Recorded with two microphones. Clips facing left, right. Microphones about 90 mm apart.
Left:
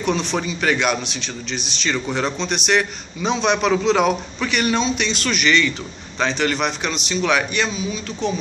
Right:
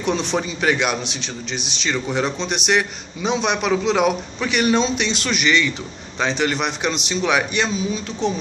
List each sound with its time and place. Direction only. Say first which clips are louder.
0.0 s a man's voice: even; 20° right (ahead or behind)